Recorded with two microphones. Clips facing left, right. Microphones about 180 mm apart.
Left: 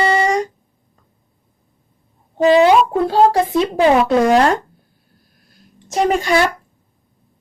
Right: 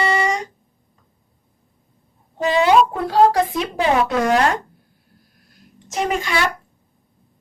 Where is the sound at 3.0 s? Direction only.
25° left (ahead or behind).